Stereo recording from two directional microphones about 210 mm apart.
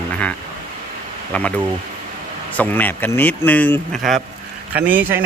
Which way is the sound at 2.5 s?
10° left (ahead or behind).